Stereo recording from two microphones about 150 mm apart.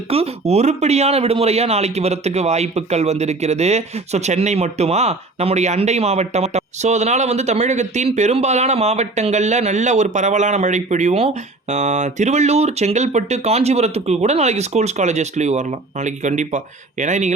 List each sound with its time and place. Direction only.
0.1 s speech: 40° right (ahead or behind)